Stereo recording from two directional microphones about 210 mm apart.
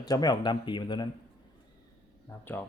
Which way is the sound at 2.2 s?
10° left (ahead or behind).